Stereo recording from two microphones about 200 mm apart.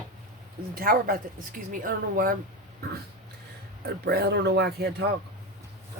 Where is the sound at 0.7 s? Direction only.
45° right (ahead or behind).